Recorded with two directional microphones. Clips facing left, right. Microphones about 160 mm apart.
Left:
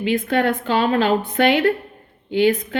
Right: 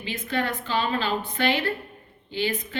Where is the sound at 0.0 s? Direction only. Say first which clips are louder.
Left 9 dB; 60° left (ahead or behind).